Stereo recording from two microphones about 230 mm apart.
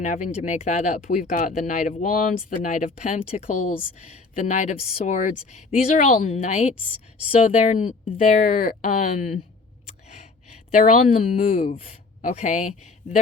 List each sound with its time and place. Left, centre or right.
0.0 s speech: left
10.7 s a woman's voice: left